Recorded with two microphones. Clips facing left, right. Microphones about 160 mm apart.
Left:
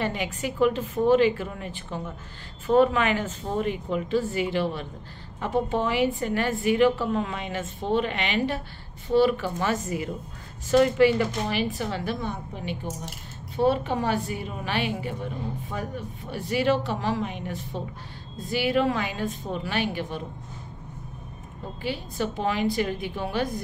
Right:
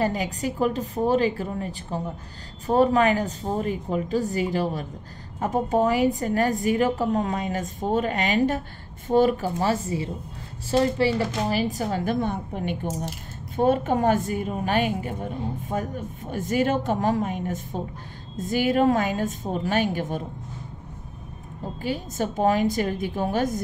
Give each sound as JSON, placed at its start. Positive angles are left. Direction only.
{"t": 0.0, "sound": "a woman's voice", "side_deg": -40}
{"t": 21.8, "sound": "a woman's voice", "side_deg": -45}